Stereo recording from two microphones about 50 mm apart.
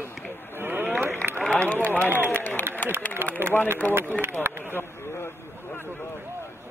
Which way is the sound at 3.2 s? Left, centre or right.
Right.